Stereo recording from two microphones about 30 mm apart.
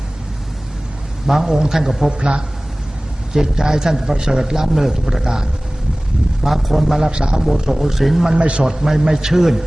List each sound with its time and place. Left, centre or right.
1.3 s a man's voice: centre
2.1 s a man's voice: right
3.3 s a man's voice: centre
6.4 s a man's voice: centre
7.1 s a man's voice: right
7.7 s a man's voice: centre
8.4 s a man's voice: right
8.6 s a man's voice: centre